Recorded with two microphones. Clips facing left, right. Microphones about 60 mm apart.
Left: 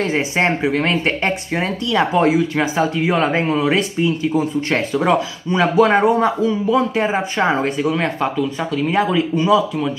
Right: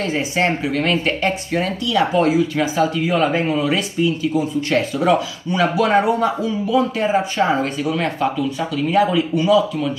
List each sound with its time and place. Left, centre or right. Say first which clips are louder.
0.0 s speech: left 2 dB; left